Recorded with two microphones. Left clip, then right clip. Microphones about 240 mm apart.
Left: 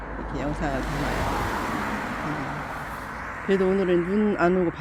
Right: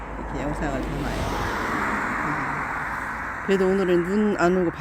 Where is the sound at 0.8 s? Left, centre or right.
Left.